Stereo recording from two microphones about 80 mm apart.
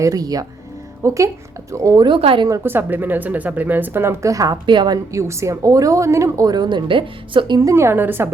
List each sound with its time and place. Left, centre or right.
0.0 s a woman's voice: right
2.0 s a woman's voice: right
2.6 s speech: right
4.2 s speech: right
4.6 s a woman's voice: right
5.1 s speech: right
7.6 s a woman's voice: right